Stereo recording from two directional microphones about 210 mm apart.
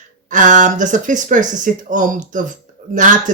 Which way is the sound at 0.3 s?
35° right (ahead or behind).